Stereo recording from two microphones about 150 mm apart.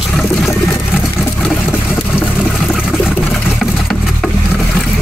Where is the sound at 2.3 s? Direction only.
5° right (ahead or behind).